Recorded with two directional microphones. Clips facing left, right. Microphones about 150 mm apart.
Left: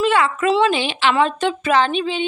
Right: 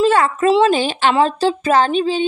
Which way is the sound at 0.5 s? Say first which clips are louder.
Right 4 dB; 30° right (ahead or behind).